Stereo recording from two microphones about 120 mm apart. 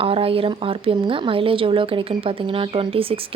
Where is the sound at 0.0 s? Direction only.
50° right (ahead or behind).